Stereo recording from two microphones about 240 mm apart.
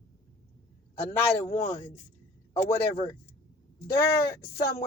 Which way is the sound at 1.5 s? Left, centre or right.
Left.